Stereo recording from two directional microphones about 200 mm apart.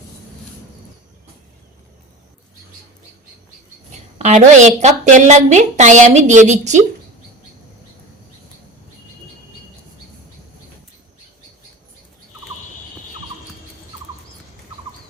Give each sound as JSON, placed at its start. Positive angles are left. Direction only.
{"t": 4.2, "sound": "a woman's voice", "side_deg": -35}